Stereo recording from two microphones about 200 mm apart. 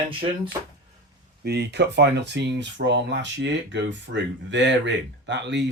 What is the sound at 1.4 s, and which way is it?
Speech, 55° right (ahead or behind).